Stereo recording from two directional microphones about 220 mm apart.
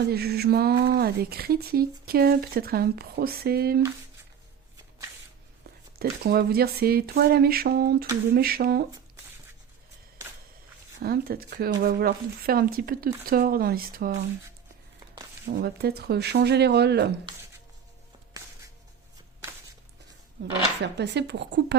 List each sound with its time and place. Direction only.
0.0 s speech: 45° right (ahead or behind)
6.0 s speech: 45° right (ahead or behind)
11.0 s speech: 45° right (ahead or behind)
15.4 s speech: 45° right (ahead or behind)
20.8 s speech: 50° right (ahead or behind)